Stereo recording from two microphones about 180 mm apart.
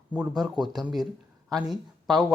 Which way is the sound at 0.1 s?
5° right (ahead or behind).